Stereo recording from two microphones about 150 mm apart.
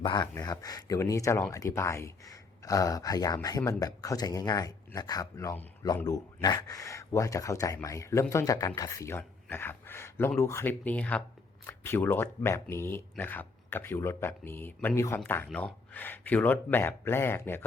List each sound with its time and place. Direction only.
0.0 s speech: 30° left (ahead or behind)